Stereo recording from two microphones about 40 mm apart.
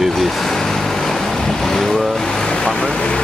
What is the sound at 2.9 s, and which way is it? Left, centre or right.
Speech, left.